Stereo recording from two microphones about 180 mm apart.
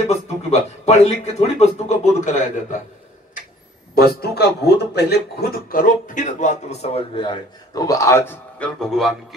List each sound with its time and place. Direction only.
0.1 s a man's voice: 35° left (ahead or behind)
3.9 s a man's voice: 60° left (ahead or behind); by 9.1 s centre (ahead or behind)